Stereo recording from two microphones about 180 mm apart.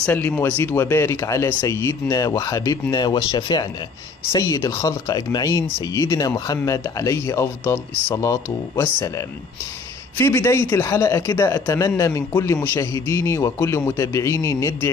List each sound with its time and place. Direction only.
0.0 s speech: 10° left (ahead or behind)
10.1 s speech: 15° left (ahead or behind)